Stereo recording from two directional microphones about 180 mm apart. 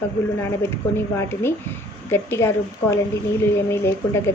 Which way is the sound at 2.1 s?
15° left (ahead or behind).